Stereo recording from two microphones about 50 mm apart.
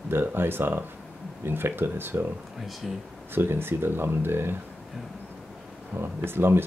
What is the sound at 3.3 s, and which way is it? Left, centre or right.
Speech, right.